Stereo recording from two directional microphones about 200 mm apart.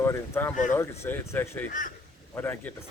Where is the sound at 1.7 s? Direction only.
40° left (ahead or behind).